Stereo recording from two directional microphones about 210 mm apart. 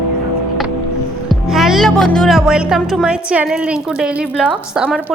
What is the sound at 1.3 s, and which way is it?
A woman's voice, centre (ahead or behind).